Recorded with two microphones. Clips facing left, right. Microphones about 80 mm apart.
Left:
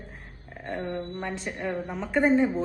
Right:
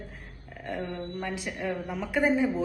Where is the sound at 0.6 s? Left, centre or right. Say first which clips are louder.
Left 2 dB; left.